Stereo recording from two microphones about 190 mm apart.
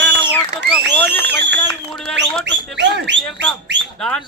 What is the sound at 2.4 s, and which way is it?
Speech, 70° right (ahead or behind).